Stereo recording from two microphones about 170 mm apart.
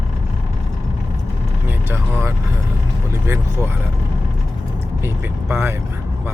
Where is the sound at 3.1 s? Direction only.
15° right (ahead or behind).